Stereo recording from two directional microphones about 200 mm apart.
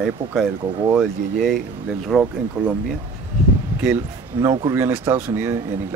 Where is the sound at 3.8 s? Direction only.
15° right (ahead or behind).